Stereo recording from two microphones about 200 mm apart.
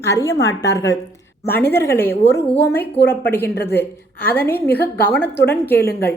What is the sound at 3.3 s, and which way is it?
A woman's voice, 10° left (ahead or behind).